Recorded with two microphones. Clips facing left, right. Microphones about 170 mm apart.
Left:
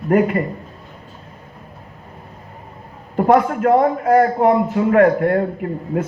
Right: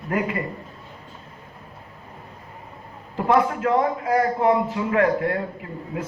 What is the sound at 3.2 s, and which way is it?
A man's voice, 50° left (ahead or behind).